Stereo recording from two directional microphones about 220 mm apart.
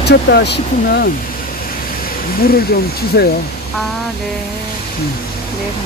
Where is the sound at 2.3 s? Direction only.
45° left (ahead or behind).